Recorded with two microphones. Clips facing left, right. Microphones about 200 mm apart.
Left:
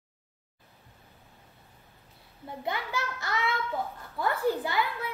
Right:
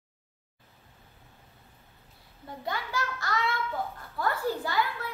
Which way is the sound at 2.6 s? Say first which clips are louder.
Even; 20° left (ahead or behind).